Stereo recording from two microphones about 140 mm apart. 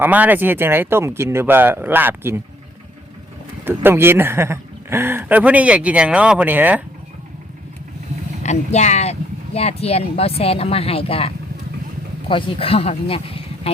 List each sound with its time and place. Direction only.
0.0 s a man's voice: 10° right (ahead or behind)
3.6 s a man's voice: 15° right (ahead or behind)
8.4 s speech: 55° left (ahead or behind)
12.3 s speech: 40° left (ahead or behind)